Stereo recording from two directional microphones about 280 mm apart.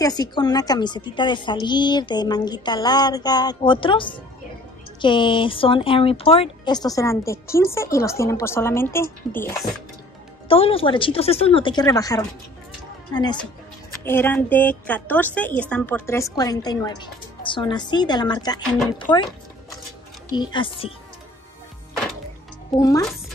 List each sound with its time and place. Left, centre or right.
0.0 s speech: centre
10.5 s speech: centre
20.2 s speech: centre
22.8 s speech: centre